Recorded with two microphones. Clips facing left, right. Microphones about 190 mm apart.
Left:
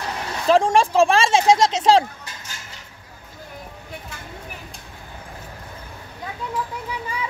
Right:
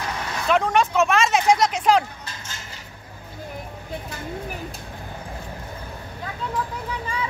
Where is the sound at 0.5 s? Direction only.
30° left (ahead or behind).